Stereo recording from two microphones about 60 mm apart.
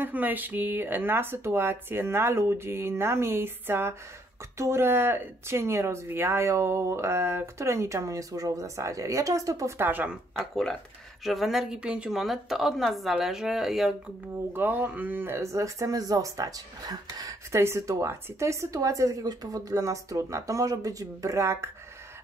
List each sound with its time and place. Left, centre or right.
0.0 s speech: right
9.8 s speech: right
10.3 s speech: centre
11.8 s a woman's voice: centre
12.2 s speech: centre
14.5 s speech: right
15.3 s speech: right
17.5 s speech: right